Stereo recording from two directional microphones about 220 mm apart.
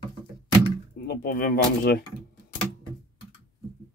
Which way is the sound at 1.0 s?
45° left (ahead or behind).